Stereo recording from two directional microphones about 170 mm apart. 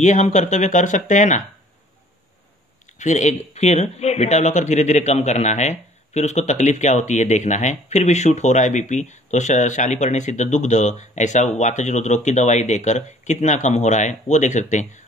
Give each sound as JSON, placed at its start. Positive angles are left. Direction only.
{"t": 0.0, "sound": "speech", "side_deg": 45}
{"t": 3.0, "sound": "speech", "side_deg": 45}